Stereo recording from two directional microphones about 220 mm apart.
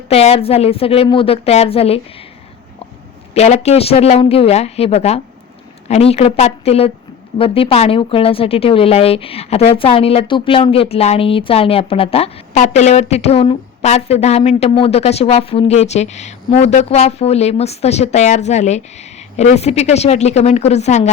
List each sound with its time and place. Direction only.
0.1 s a woman's voice: 25° left (ahead or behind)
3.3 s a woman's voice: 30° left (ahead or behind)